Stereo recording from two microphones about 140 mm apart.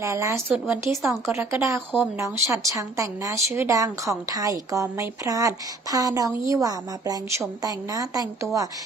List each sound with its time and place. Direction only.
0.0 s speech: 20° right (ahead or behind)